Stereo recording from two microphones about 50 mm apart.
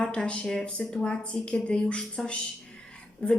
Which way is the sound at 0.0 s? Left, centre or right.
Centre.